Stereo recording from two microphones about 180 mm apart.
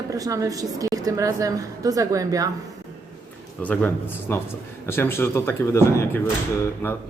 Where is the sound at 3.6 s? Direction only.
10° left (ahead or behind).